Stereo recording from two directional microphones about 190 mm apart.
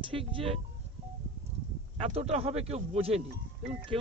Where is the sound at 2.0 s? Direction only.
30° right (ahead or behind).